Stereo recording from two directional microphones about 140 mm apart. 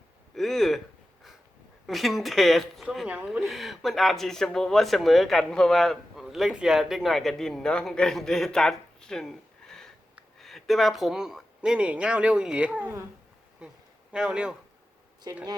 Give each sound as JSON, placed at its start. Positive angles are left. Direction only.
{"t": 0.3, "sound": "a sound", "side_deg": 0}
{"t": 1.9, "sound": "speech", "side_deg": 0}
{"t": 14.1, "sound": "speech", "side_deg": -5}
{"t": 15.3, "sound": "a woman's voice", "side_deg": -25}